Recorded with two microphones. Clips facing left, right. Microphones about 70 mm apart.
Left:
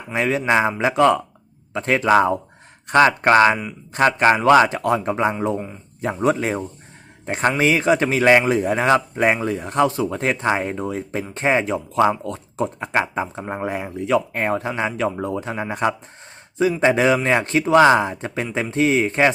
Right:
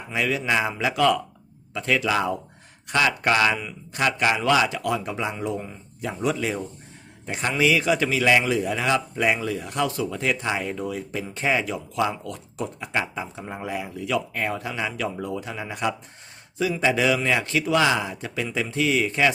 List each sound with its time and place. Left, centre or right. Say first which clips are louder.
0.1 s a man's voice: left 5 dB; left